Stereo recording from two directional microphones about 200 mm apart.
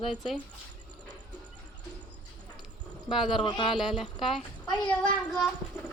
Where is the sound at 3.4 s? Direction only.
25° left (ahead or behind).